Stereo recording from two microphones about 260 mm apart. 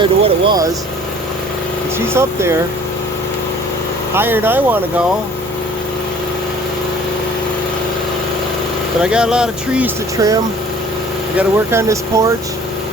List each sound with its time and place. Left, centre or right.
0.0 s speech: centre
2.1 s speech: centre
4.1 s speech: centre
9.0 s speech: centre